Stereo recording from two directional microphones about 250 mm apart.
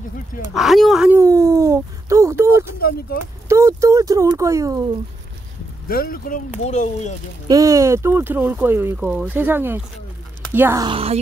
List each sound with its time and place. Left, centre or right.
0.6 s speech: centre
2.8 s speech: left
3.4 s speech: centre
5.9 s speech: left
7.4 s speech: centre